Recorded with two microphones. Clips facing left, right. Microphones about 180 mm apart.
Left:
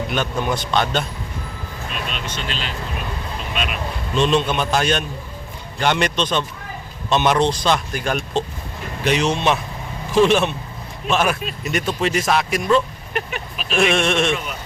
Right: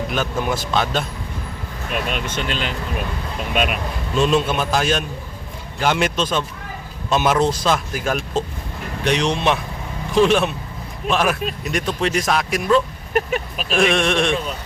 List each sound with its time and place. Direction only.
0.1 s speech: 5° right (ahead or behind)
1.9 s speech: 55° right (ahead or behind)
4.1 s speech: 5° right (ahead or behind)
13.1 s speech: 40° right (ahead or behind)
13.7 s speech: centre (ahead or behind)